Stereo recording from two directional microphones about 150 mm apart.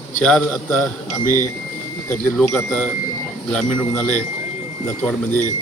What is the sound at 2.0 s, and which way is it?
A man's voice, 10° left (ahead or behind).